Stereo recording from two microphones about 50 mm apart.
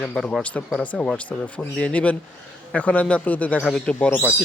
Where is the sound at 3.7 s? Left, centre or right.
Left.